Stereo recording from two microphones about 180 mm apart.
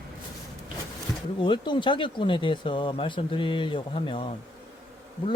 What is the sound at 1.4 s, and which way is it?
Speech, 25° left (ahead or behind).